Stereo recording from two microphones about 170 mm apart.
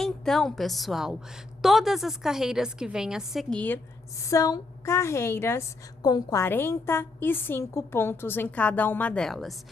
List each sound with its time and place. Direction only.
0.0 s a woman's voice: centre (ahead or behind)
4.2 s a woman's voice: 20° left (ahead or behind); by 9.6 s centre (ahead or behind)